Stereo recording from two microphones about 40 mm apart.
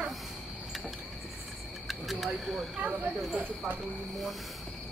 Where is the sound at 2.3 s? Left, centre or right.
Centre.